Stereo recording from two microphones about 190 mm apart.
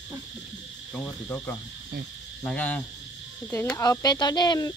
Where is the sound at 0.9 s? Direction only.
10° left (ahead or behind).